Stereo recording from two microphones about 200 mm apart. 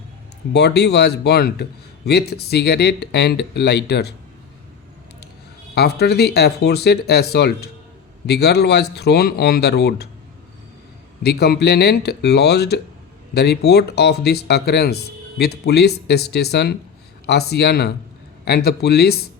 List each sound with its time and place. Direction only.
0.5 s speech: 55° left (ahead or behind)
5.7 s speech: 55° left (ahead or behind)
11.2 s speech: 55° left (ahead or behind)